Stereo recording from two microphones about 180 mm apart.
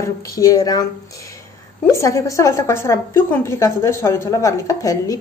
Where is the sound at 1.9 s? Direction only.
15° left (ahead or behind).